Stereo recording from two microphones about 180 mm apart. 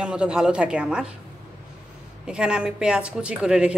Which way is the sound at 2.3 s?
5° right (ahead or behind).